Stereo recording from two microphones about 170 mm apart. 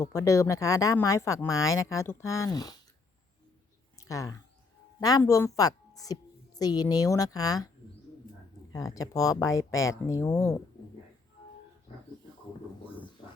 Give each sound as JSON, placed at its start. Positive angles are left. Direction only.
{"t": 0.0, "sound": "speech", "side_deg": 20}
{"t": 3.9, "sound": "a sound", "side_deg": 20}
{"t": 4.9, "sound": "a woman's voice", "side_deg": 20}
{"t": 8.7, "sound": "speech", "side_deg": 20}